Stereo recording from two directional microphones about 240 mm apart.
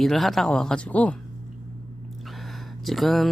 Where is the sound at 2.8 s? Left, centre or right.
Centre.